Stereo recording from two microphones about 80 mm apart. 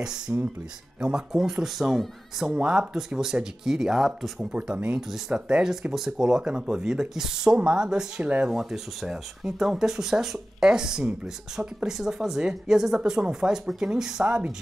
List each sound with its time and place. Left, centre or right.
0.3 s speech: centre
2.5 s speech: centre
4.6 s speech: centre